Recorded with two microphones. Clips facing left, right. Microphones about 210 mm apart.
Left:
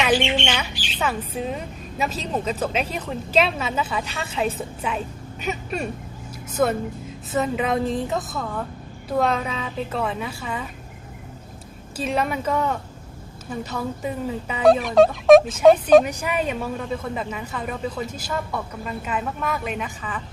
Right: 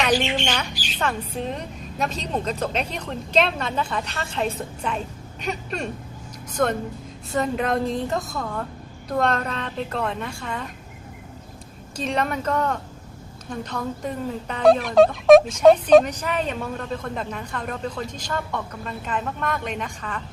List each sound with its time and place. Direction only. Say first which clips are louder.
0.4 s speech: even; 5° left (ahead or behind)
11.9 s speech: left 1 dB; 5° left (ahead or behind)